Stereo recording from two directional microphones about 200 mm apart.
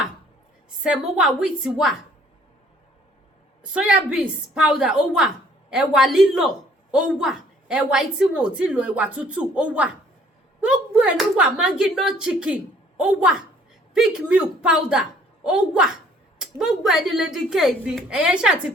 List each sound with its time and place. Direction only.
0.8 s a woman's voice: 5° right (ahead or behind)
3.6 s a woman's voice: 5° right (ahead or behind)